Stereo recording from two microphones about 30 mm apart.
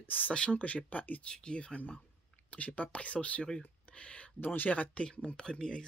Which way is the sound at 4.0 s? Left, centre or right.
Left.